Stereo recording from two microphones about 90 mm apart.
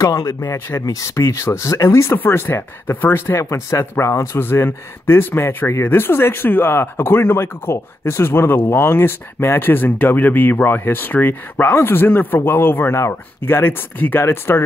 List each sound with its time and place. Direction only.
0.0 s speech: 40° left (ahead or behind)